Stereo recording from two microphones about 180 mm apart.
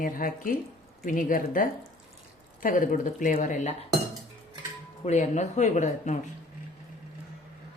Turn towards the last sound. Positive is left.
turn(degrees=40)  # may be behind; listen again after turning